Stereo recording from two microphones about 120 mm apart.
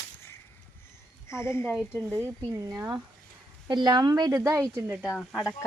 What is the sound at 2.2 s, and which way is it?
Speech, 25° right (ahead or behind).